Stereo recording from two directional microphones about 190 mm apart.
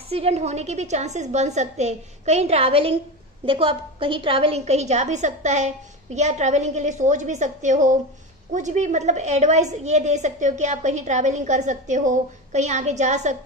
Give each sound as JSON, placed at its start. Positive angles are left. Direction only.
{"t": 0.1, "sound": "a woman's voice", "side_deg": -35}